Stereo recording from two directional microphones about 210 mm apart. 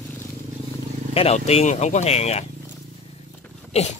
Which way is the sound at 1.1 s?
30° left (ahead or behind).